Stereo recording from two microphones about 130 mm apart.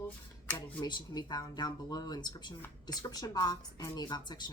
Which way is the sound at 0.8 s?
35° left (ahead or behind).